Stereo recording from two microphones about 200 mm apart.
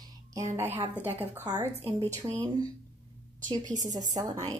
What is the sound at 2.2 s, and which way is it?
Speech, 25° right (ahead or behind).